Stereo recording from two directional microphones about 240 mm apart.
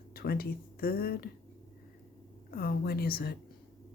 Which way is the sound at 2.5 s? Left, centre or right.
Left.